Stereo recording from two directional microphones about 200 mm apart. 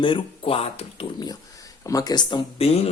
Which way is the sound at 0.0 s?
25° left (ahead or behind).